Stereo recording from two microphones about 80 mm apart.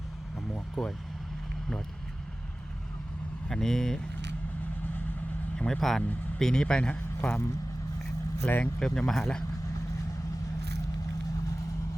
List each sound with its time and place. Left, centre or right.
0.5 s vehicle: centre
3.5 s speech: centre
5.5 s a man's voice: centre
8.4 s speech: left
8.8 s a man's voice: centre